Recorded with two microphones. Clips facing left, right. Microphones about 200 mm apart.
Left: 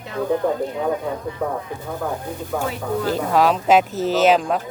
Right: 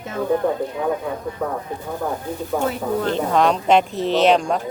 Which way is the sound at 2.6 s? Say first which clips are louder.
Right 1 dB; 5° left (ahead or behind).